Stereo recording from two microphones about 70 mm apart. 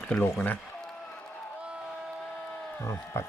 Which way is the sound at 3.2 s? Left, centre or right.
Left.